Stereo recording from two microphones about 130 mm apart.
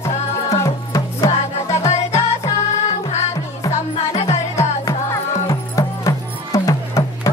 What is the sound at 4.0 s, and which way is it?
Music, 55° left (ahead or behind).